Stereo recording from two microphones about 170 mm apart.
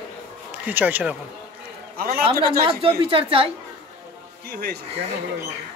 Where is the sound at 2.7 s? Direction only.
30° right (ahead or behind).